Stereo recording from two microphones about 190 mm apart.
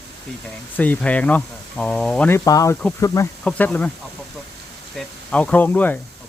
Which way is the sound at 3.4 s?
5° left (ahead or behind).